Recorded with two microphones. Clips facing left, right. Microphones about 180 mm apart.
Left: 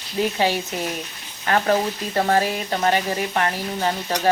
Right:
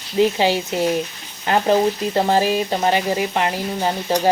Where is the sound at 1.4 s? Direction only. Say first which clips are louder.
Right 3 dB; 20° right (ahead or behind).